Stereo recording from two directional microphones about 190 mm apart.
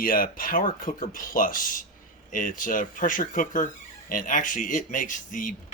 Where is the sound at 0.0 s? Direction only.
50° left (ahead or behind).